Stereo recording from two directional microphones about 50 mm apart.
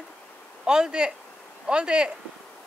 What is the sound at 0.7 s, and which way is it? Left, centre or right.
Speech, centre.